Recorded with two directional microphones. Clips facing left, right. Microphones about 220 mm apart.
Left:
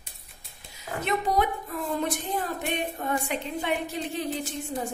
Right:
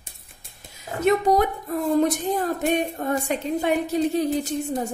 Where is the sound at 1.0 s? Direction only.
45° right (ahead or behind).